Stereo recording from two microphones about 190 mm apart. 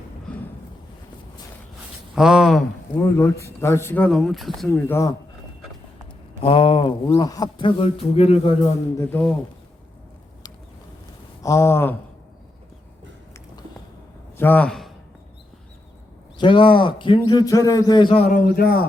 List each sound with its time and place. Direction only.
2.1 s speech: centre (ahead or behind)
3.0 s speech: 15° left (ahead or behind)
6.4 s speech: 30° left (ahead or behind)
9.0 s speech: 10° left (ahead or behind)
11.4 s speech: 15° left (ahead or behind)
14.3 s a man's voice: 10° left (ahead or behind)
16.4 s speech: 25° left (ahead or behind)
18.3 s speech: 50° left (ahead or behind)